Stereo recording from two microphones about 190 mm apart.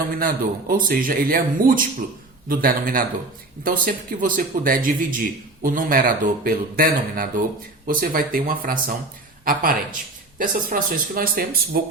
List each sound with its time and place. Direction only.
0.2 s a man's voice: 50° right (ahead or behind)